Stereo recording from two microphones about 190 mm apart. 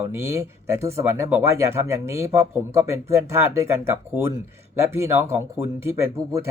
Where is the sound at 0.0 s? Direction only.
10° right (ahead or behind).